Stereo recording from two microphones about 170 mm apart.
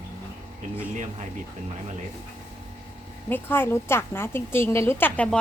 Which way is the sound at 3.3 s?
10° left (ahead or behind).